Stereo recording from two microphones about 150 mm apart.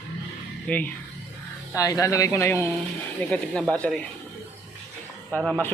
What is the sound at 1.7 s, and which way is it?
Speech, 20° left (ahead or behind).